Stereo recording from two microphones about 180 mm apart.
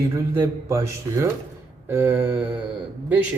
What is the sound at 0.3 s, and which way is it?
Speech, 15° right (ahead or behind).